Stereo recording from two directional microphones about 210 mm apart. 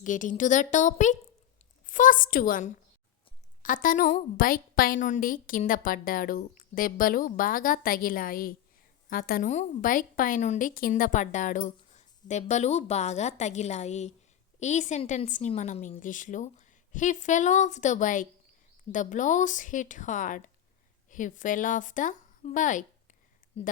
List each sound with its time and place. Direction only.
0.0 s a woman's voice: 40° left (ahead or behind)